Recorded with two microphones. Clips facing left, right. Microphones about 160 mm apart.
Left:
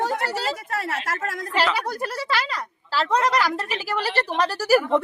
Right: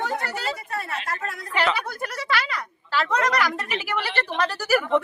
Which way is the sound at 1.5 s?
35° left (ahead or behind).